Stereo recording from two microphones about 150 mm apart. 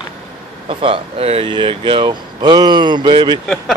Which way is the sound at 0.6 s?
35° right (ahead or behind).